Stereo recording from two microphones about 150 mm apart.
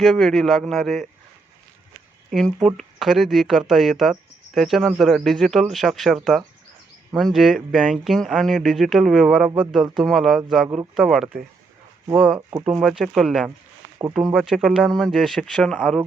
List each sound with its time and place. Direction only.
0.0 s speech: centre (ahead or behind)
2.3 s speech: centre (ahead or behind)
14.0 s speech: 30° right (ahead or behind)
14.3 s speech: centre (ahead or behind)